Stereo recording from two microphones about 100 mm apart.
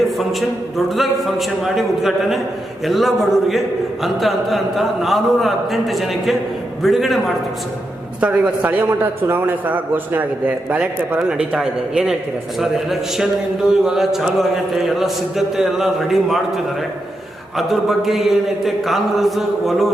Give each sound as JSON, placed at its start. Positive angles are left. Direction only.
{"t": 0.2, "sound": "a man's voice", "side_deg": 0}
{"t": 8.2, "sound": "a man's voice", "side_deg": -15}
{"t": 17.6, "sound": "a man's voice", "side_deg": 0}